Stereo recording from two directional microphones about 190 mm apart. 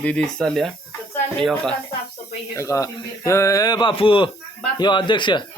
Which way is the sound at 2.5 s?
15° left (ahead or behind).